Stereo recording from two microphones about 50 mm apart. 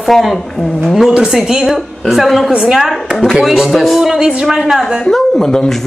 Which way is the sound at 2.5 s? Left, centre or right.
Centre.